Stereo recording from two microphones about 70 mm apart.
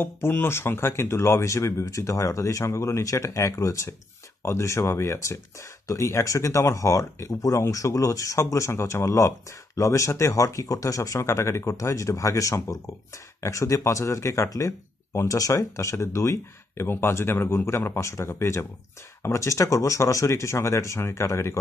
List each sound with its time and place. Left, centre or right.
0.0 s speech: left